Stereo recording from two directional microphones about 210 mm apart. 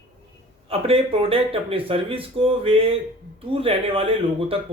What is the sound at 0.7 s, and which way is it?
Speech, 25° right (ahead or behind).